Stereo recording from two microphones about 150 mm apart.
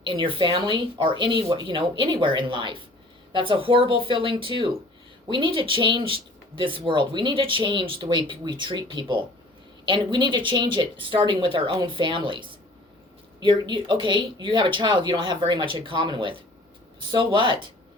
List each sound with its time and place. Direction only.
0.0 s speech: 35° right (ahead or behind)